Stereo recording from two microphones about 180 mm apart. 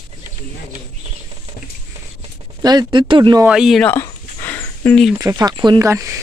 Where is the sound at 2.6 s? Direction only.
20° right (ahead or behind).